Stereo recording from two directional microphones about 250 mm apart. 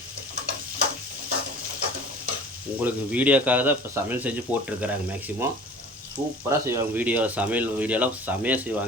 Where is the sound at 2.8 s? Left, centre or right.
Centre.